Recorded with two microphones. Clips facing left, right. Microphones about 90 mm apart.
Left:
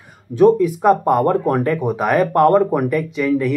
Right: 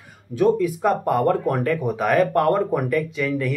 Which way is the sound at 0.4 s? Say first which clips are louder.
Left 6 dB; 20° left (ahead or behind).